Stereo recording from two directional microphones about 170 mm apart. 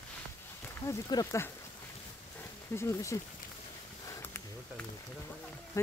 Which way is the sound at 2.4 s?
15° left (ahead or behind).